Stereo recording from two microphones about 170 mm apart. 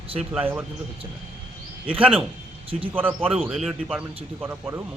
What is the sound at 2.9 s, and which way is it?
Speech, 10° right (ahead or behind).